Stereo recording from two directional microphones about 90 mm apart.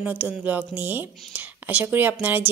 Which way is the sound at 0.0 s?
15° right (ahead or behind).